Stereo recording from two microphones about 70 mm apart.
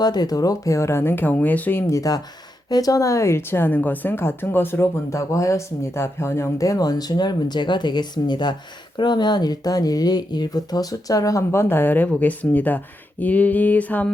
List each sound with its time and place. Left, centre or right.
0.0 s a woman's voice: left
1.9 s a woman's voice: left
5.1 s speech: left
11.5 s a woman's voice: left